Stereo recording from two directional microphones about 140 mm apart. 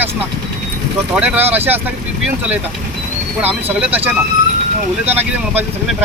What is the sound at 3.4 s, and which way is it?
Speech, 10° right (ahead or behind).